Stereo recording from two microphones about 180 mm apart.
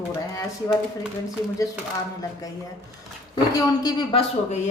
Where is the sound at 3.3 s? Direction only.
20° left (ahead or behind).